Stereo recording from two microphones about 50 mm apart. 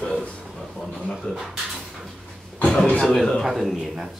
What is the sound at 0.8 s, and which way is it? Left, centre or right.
Speech, centre.